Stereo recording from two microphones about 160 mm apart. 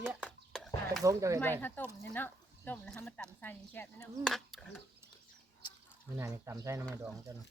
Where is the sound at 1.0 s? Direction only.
20° right (ahead or behind).